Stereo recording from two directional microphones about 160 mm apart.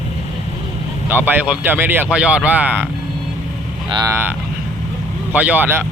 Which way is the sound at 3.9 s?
25° right (ahead or behind).